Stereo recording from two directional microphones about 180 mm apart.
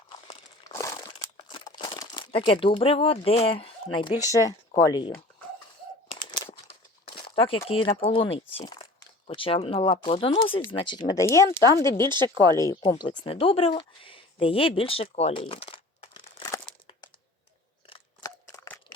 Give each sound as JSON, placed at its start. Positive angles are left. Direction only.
{"t": 0.7, "sound": "crumpling", "side_deg": 15}
{"t": 4.2, "sound": "speech", "side_deg": 20}
{"t": 6.7, "sound": "a sound", "side_deg": 30}
{"t": 9.2, "sound": "speech", "side_deg": 30}
{"t": 11.9, "sound": "speech", "side_deg": -25}
{"t": 12.6, "sound": "speech", "side_deg": 20}
{"t": 16.7, "sound": "crumpling", "side_deg": 5}
{"t": 18.2, "sound": "a sound", "side_deg": 20}